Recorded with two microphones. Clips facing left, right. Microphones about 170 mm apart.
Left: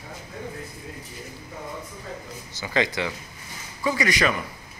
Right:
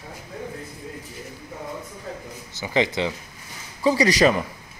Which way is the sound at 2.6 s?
20° right (ahead or behind).